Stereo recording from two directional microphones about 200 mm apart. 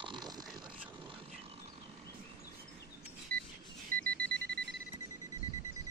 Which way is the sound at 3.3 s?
5° left (ahead or behind).